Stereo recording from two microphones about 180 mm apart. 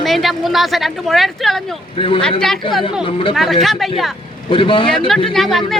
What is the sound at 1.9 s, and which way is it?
Speech, 30° left (ahead or behind).